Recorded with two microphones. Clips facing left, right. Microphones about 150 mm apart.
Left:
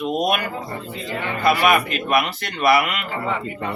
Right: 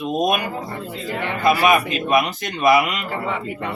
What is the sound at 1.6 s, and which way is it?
Speech, 15° right (ahead or behind).